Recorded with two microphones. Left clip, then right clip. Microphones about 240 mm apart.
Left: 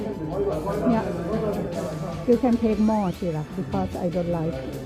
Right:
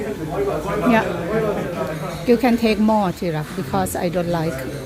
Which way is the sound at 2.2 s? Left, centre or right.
Centre.